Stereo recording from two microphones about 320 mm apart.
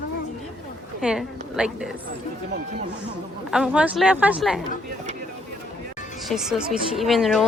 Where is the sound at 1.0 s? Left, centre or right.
Centre.